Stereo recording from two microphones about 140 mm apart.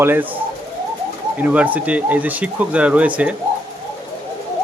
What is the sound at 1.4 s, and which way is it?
Speech, 10° right (ahead or behind).